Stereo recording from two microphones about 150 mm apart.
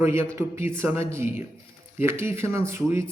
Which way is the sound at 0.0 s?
15° right (ahead or behind).